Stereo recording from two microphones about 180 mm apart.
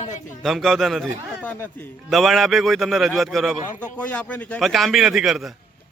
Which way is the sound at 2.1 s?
Centre (ahead or behind).